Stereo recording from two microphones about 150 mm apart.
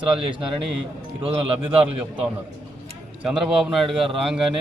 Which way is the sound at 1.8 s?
10° right (ahead or behind).